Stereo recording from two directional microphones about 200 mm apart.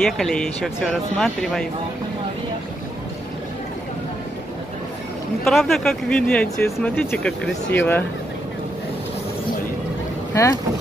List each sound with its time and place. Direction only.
0.0 s speech: centre (ahead or behind)
5.4 s speech: centre (ahead or behind)
10.3 s speech: 15° left (ahead or behind)